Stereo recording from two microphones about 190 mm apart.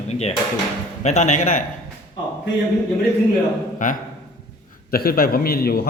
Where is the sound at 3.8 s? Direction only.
45° left (ahead or behind).